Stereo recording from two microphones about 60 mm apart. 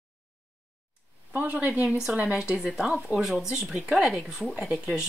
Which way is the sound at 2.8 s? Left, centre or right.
Centre.